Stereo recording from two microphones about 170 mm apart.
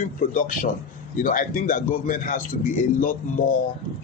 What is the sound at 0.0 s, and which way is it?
Speech, 55° left (ahead or behind).